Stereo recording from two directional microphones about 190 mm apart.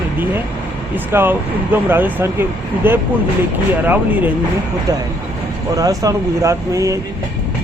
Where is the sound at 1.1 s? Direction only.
10° right (ahead or behind).